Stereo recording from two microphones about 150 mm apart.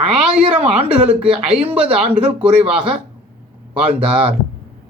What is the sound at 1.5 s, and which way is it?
Speech, 40° right (ahead or behind).